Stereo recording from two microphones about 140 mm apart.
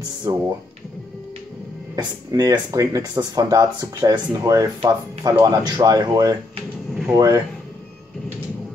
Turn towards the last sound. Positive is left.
turn(degrees=-25)  # may be behind; listen again after turning